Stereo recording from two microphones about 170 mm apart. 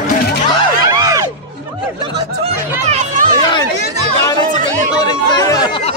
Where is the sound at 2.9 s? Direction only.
45° right (ahead or behind).